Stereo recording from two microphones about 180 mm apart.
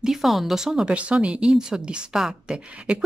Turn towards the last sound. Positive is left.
turn(degrees=-5)  # may be behind; listen again after turning